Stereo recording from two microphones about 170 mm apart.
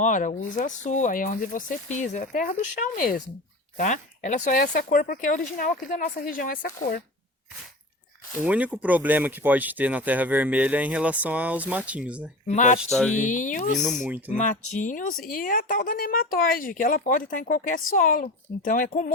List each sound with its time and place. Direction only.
0.0 s speech: 50° left (ahead or behind)
4.8 s speech: 55° left (ahead or behind)
8.4 s speech: 10° right (ahead or behind)
12.5 s speech: 45° left (ahead or behind)
12.8 s speech: centre (ahead or behind)
13.1 s speech: 50° left (ahead or behind)
13.7 s speech: centre (ahead or behind)
14.3 s speech: 50° left (ahead or behind)